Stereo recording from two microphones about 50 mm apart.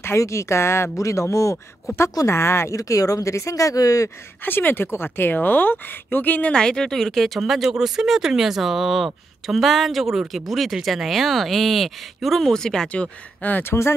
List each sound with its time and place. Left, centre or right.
0.0 s a woman's voice: left
0.9 s speech: left
2.0 s speech: left
4.5 s speech: left
6.5 s speech: centre; by 13.7 s left
13.7 s a woman's voice: left